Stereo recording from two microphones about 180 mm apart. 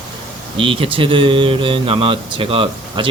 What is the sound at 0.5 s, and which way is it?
Speech, 30° right (ahead or behind).